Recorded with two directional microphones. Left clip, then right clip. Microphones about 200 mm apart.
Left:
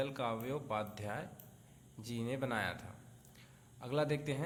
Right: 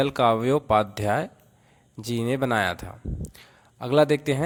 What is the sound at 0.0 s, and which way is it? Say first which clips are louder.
A man's voice: right 18 dB; 45° right (ahead or behind).